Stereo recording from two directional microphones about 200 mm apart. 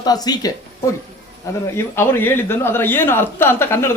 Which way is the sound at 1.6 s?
10° left (ahead or behind).